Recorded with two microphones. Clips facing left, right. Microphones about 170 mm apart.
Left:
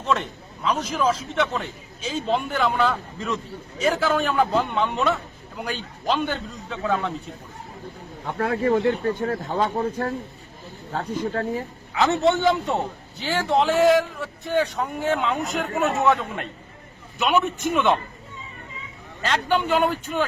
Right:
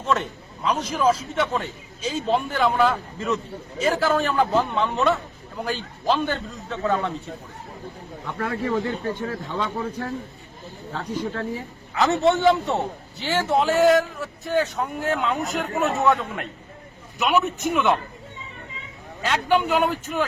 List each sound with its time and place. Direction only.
0.0 s a man's voice: 5° right (ahead or behind)
8.4 s a man's voice: 55° left (ahead or behind)
11.9 s a man's voice: centre (ahead or behind)
19.2 s a man's voice: 10° right (ahead or behind)